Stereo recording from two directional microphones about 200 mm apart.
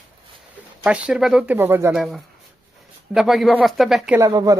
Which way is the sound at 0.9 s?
5° right (ahead or behind).